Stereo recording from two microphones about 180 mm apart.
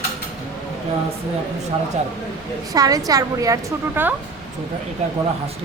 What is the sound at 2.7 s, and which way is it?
Speech, 20° right (ahead or behind).